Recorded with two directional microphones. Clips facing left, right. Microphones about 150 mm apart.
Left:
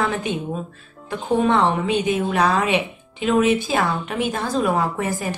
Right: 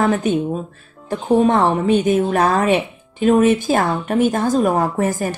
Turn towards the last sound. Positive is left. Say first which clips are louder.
# right 5 dB
turn(degrees=-45)  # may be behind; listen again after turning